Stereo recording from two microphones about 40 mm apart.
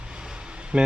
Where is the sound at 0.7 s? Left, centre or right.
Right.